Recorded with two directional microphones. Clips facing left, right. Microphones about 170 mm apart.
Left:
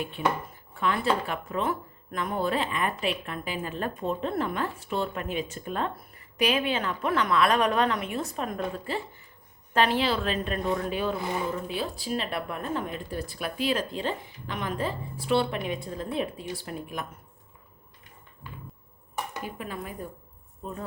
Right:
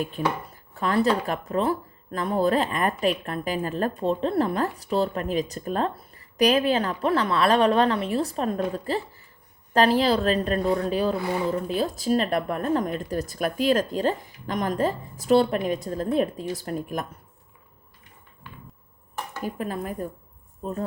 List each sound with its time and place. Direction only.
0.2 s speech: 40° right (ahead or behind)
19.4 s speech: 40° right (ahead or behind)